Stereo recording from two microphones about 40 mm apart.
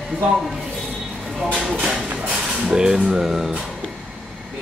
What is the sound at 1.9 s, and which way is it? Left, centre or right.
Music, centre.